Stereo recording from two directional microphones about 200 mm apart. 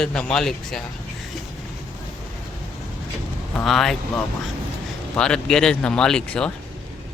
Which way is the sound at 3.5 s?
Centre (ahead or behind).